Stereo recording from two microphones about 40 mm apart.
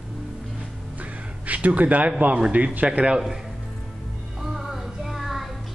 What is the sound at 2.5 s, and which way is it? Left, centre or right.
Speech, right.